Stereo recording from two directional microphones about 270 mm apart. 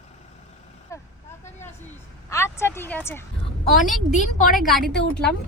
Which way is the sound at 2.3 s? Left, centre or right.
Centre.